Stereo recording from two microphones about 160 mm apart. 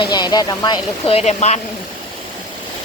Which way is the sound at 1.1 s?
40° left (ahead or behind).